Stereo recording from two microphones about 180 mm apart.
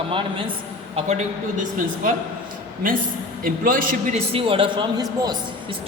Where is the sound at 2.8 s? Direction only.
50° right (ahead or behind).